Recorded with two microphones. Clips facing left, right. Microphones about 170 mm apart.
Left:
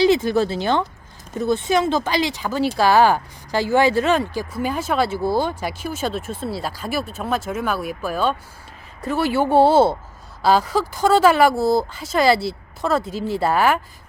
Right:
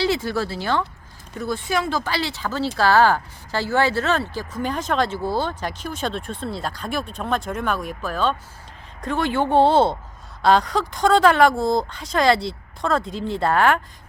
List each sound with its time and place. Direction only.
0.0 s speech: 20° left (ahead or behind)